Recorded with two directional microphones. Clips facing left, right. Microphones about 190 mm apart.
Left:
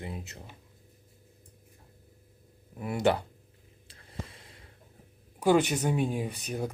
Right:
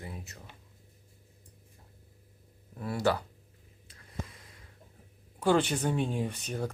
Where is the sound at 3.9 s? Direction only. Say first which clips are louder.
Even; 30° left (ahead or behind).